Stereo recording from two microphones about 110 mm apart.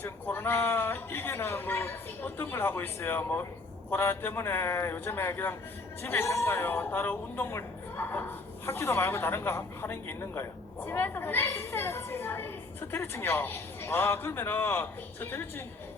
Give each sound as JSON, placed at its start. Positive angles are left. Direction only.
{"t": 0.0, "sound": "speech", "side_deg": 20}